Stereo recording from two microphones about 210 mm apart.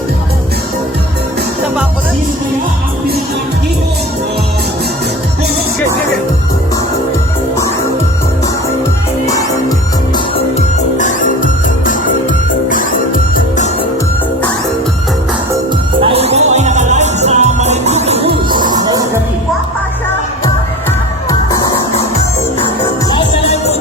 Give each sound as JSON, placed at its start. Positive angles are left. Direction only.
{"t": 9.2, "sound": "music", "side_deg": 15}
{"t": 12.6, "sound": "music", "side_deg": 40}
{"t": 16.0, "sound": "music", "side_deg": -30}
{"t": 21.2, "sound": "music", "side_deg": 15}
{"t": 22.6, "sound": "music", "side_deg": 25}